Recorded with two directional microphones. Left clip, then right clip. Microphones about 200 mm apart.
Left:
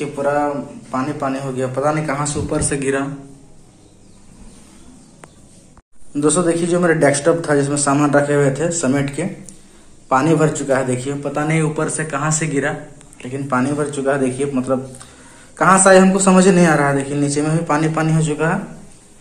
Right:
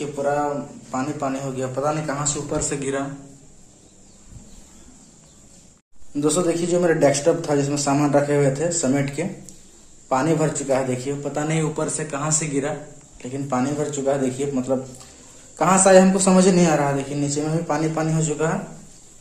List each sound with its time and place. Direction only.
0.0 s a man's voice: centre (ahead or behind)
6.1 s a man's voice: 5° right (ahead or behind)
10.0 s a man's voice: 5° right (ahead or behind)